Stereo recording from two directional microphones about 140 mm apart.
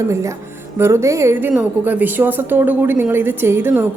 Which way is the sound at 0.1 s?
20° right (ahead or behind).